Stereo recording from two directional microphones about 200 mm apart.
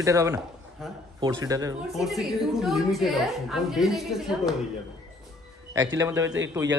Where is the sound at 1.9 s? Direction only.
Centre (ahead or behind).